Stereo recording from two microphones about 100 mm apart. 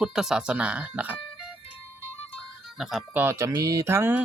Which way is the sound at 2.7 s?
Centre (ahead or behind).